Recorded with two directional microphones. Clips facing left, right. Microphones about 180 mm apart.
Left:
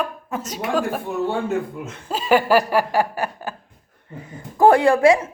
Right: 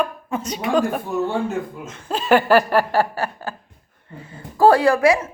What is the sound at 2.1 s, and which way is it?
Chuckle, 10° left (ahead or behind).